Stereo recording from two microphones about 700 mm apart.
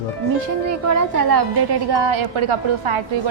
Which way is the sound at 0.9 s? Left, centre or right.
Right.